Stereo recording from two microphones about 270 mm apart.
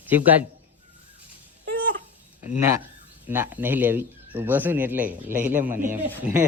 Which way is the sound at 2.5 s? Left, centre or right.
Centre.